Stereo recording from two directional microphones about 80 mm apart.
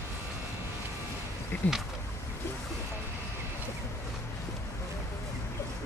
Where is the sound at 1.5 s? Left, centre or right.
Left.